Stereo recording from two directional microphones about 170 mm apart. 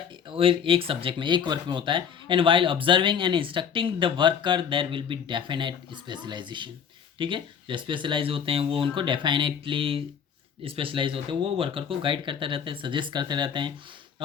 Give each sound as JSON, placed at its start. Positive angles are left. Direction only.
{"t": 0.3, "sound": "speech", "side_deg": -30}